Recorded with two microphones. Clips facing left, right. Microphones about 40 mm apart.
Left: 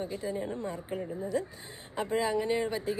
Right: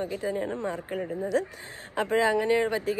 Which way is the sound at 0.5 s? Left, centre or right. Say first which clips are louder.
Right 5 dB; right.